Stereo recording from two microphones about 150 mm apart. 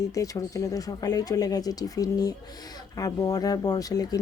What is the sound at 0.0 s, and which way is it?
A woman's voice, 25° left (ahead or behind).